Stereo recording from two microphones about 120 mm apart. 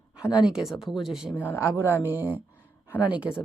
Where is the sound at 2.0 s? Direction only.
15° right (ahead or behind).